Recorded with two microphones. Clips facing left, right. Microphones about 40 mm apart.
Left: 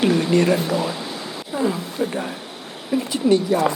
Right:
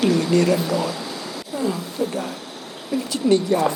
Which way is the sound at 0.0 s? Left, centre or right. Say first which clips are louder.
Left 1 dB; left.